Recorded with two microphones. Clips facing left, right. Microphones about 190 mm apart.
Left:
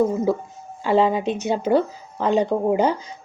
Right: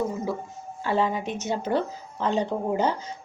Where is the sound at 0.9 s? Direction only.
20° left (ahead or behind).